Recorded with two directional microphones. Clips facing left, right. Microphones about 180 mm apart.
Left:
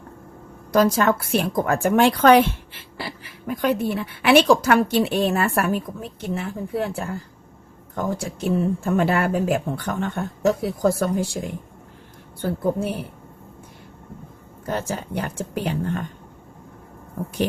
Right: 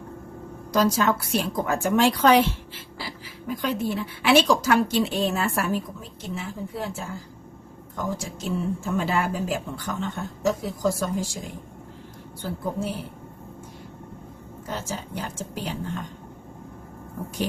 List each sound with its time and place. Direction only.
0.7 s a woman's voice: 55° left (ahead or behind)
14.7 s a woman's voice: 60° left (ahead or behind)